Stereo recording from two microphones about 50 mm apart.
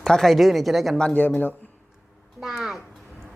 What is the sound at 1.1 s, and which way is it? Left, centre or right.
Speech, left.